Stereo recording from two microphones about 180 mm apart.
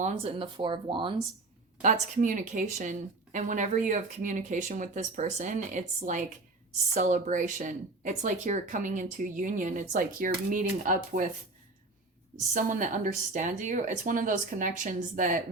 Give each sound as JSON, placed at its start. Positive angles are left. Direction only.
{"t": 0.0, "sound": "speech", "side_deg": -35}
{"t": 1.8, "sound": "speech", "side_deg": -45}
{"t": 12.5, "sound": "speech", "side_deg": -45}